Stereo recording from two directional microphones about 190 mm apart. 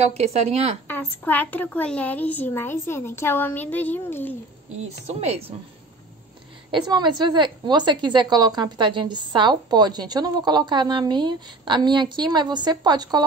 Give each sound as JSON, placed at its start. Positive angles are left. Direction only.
{"t": 0.0, "sound": "speech", "side_deg": -35}
{"t": 0.8, "sound": "a woman's voice", "side_deg": 10}
{"t": 4.8, "sound": "speech", "side_deg": -35}
{"t": 6.7, "sound": "a woman's voice", "side_deg": -25}